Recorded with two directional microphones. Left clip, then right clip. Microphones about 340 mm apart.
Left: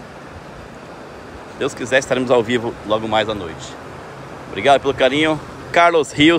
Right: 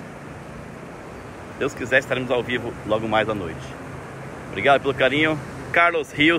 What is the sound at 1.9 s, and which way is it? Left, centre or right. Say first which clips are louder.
Speech: left 6 dB; centre.